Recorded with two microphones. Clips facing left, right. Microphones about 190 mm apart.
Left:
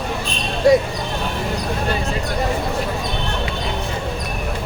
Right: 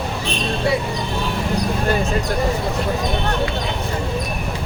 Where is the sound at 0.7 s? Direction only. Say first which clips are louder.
Left 8 dB; 40° left (ahead or behind).